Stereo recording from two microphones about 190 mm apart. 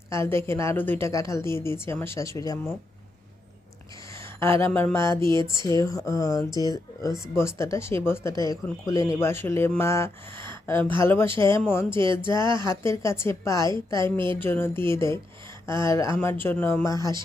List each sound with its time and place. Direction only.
0.1 s speech: 15° left (ahead or behind)
4.2 s a sound: 15° left (ahead or behind)
4.6 s speech: 10° left (ahead or behind)
5.2 s speech: 25° right (ahead or behind)
5.5 s speech: 15° left (ahead or behind)
12.0 s speech: 25° right (ahead or behind)
12.5 s speech: 15° left (ahead or behind)
14.0 s speech: 25° right (ahead or behind)
14.3 s speech: 10° left (ahead or behind)